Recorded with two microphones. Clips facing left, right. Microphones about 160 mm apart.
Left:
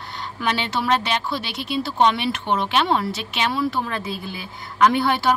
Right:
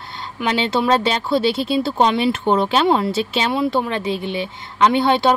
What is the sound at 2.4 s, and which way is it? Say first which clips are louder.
Speech: right 4 dB; 40° right (ahead or behind).